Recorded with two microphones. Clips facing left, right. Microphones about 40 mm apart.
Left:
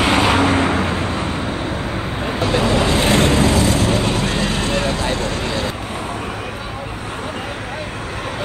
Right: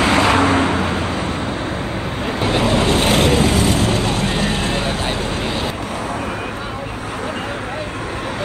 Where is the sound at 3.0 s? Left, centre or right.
Right.